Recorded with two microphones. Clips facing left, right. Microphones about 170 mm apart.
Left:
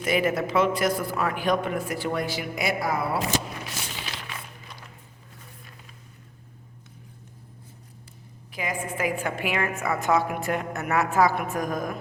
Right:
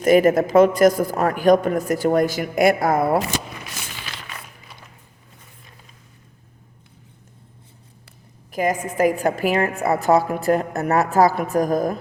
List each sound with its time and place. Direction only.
0.0 s a woman's voice: 45° right (ahead or behind)
8.5 s a woman's voice: 45° right (ahead or behind)